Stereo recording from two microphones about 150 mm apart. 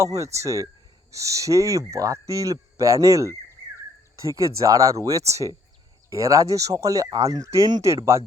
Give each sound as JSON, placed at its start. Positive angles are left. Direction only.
{"t": 0.0, "sound": "speech", "side_deg": -20}